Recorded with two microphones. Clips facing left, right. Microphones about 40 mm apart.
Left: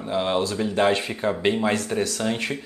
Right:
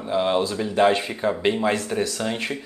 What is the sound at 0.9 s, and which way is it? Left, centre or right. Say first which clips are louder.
Speech: right 1 dB; right.